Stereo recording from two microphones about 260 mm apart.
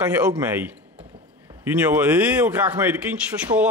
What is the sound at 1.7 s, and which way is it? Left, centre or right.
A man's voice, centre.